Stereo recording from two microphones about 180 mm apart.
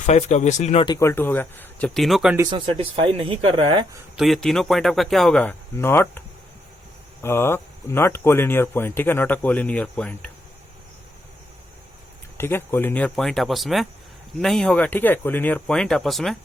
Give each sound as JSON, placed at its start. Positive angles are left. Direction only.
{"t": 0.0, "sound": "speech", "side_deg": 40}
{"t": 0.9, "sound": "speech", "side_deg": 15}
{"t": 2.5, "sound": "speech", "side_deg": -30}
{"t": 4.2, "sound": "speech", "side_deg": 0}
{"t": 12.4, "sound": "speech", "side_deg": 10}